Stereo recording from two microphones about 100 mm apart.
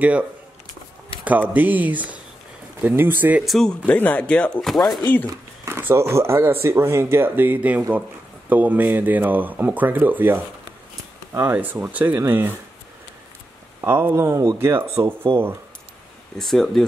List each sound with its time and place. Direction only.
0.0 s speech: 15° right (ahead or behind)
3.4 s speech: 5° left (ahead or behind)
3.8 s speech: 15° left (ahead or behind)
5.0 s speech: 20° left (ahead or behind)
5.7 s speech: 25° right (ahead or behind)
13.7 s speech: 25° right (ahead or behind)
16.3 s speech: 5° left (ahead or behind)